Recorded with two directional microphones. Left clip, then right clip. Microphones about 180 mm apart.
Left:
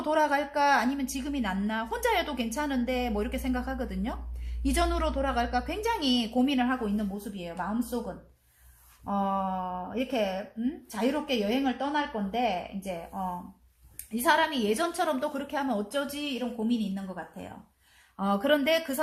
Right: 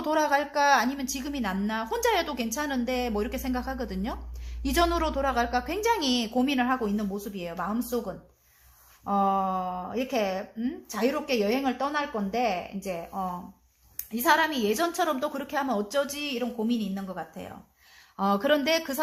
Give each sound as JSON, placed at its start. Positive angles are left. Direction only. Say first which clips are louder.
{"t": 0.0, "sound": "a woman's voice", "louder": "right 1 dB", "side_deg": -25}
{"t": 13.9, "sound": "a woman's voice", "louder": "right 2 dB", "side_deg": -20}
{"t": 18.2, "sound": "a woman's voice", "louder": "right 2 dB", "side_deg": -30}